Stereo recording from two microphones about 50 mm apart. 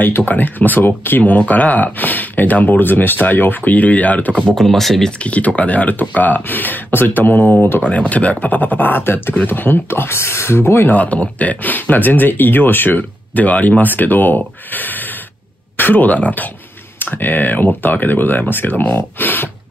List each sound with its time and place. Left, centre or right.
0.0 s speech: left
4.4 s speech: centre
4.6 s speech: centre
5.2 s speech: left
7.9 s speech: left
10.9 s speech: left